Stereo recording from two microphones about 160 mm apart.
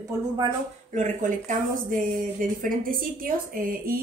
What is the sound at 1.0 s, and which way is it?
Speech, 55° right (ahead or behind).